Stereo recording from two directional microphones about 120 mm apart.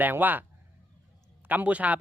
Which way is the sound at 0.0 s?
15° right (ahead or behind).